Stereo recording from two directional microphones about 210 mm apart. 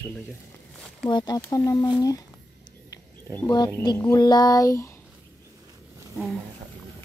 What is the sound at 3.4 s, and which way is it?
Speech, 15° left (ahead or behind).